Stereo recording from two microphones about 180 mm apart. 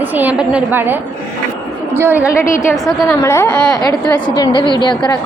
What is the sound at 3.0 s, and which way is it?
Speech, 15° left (ahead or behind).